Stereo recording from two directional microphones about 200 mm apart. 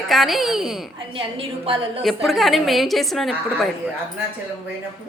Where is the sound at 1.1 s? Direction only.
25° right (ahead or behind).